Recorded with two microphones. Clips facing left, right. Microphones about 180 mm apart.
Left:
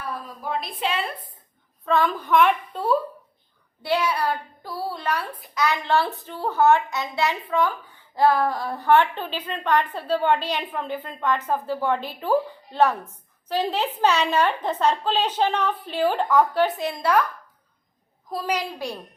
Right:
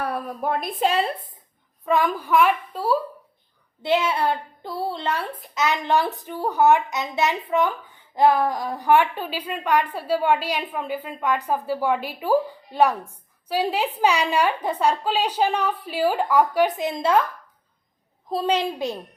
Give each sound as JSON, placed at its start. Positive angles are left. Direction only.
{"t": 0.0, "sound": "a woman's voice", "side_deg": -65}
{"t": 1.8, "sound": "a child's voice", "side_deg": -15}
{"t": 3.8, "sound": "a child's voice", "side_deg": -25}
{"t": 18.3, "sound": "a woman's voice", "side_deg": -25}